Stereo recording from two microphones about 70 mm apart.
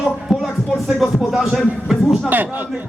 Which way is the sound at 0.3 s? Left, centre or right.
Centre.